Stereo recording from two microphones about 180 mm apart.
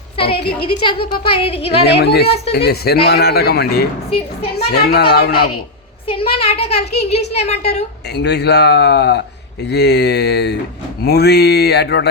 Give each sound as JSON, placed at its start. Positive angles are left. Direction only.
{"t": 0.2, "sound": "a woman's voice", "side_deg": 30}
{"t": 1.9, "sound": "speech", "side_deg": 65}
{"t": 2.2, "sound": "speech", "side_deg": 35}
{"t": 2.5, "sound": "speech", "side_deg": 65}
{"t": 6.1, "sound": "speech", "side_deg": 30}
{"t": 8.1, "sound": "speech", "side_deg": 65}